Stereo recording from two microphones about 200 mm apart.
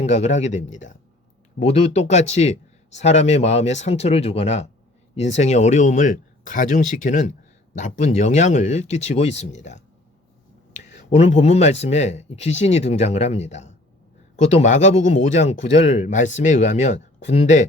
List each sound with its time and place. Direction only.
0.0 s a man's voice: 35° left (ahead or behind)